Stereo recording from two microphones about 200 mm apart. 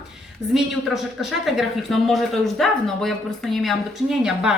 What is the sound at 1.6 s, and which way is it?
Speech, centre (ahead or behind).